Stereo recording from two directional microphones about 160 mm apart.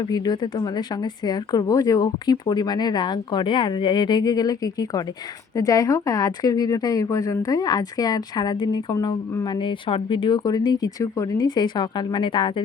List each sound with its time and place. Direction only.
0.0 s a woman's voice: 25° left (ahead or behind)